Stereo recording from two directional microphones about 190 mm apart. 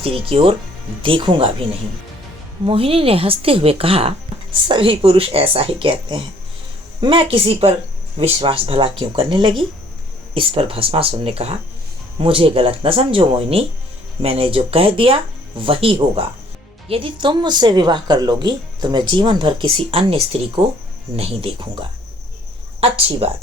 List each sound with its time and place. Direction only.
0.0 s speech: 25° right (ahead or behind)
2.6 s speech: 30° right (ahead or behind)